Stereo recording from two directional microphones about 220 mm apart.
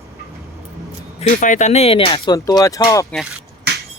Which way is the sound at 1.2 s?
35° left (ahead or behind).